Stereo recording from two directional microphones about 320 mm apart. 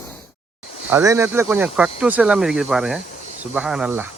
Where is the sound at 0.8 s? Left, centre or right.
Centre.